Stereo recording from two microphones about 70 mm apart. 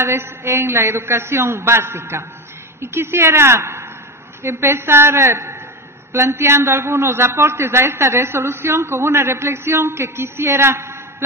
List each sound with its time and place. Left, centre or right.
0.0 s a man's voice: right